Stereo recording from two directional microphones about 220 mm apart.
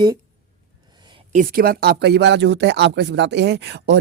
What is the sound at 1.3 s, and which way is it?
Speech, 40° right (ahead or behind).